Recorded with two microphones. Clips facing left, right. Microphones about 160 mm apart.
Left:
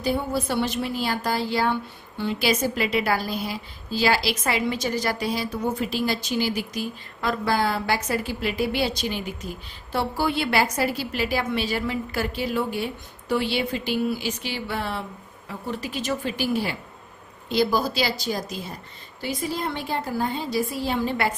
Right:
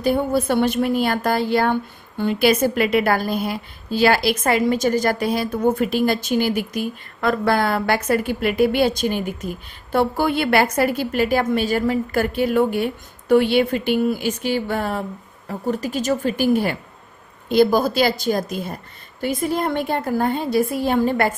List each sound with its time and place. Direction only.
0.0 s a woman's voice: 55° right (ahead or behind)